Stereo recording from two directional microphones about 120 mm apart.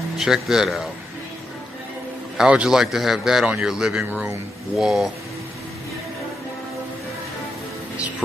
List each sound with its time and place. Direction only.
0.2 s speech: 5° right (ahead or behind)
2.4 s speech: 5° right (ahead or behind)
4.0 s speech: 15° right (ahead or behind)
4.8 s speech: 5° right (ahead or behind)